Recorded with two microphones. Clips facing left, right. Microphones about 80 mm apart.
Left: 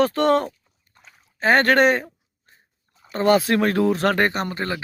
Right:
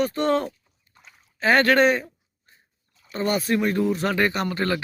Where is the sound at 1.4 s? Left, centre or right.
Left.